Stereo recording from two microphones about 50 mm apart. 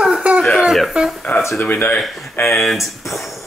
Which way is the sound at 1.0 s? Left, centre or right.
Centre.